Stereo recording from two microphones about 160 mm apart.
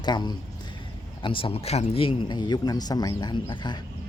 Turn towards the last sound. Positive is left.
turn(degrees=30)  # may be behind; listen again after turning